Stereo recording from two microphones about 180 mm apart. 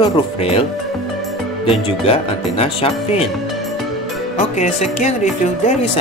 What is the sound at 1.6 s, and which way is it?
Speech, 30° left (ahead or behind).